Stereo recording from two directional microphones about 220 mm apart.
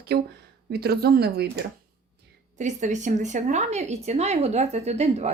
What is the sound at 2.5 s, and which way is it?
Speech, 35° right (ahead or behind).